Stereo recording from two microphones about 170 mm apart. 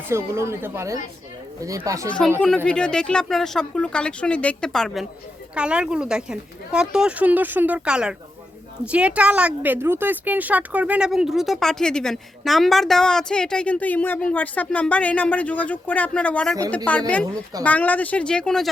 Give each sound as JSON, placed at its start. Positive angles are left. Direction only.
{"t": 0.1, "sound": "speech", "side_deg": -15}
{"t": 2.0, "sound": "speech", "side_deg": 5}